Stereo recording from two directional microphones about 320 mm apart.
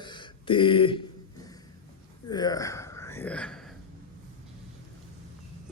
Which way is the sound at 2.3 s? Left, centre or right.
Centre.